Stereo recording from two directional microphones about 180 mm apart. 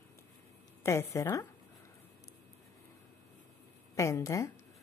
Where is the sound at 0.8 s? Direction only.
15° left (ahead or behind).